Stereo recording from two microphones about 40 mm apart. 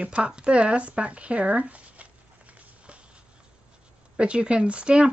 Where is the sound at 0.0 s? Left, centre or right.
Right.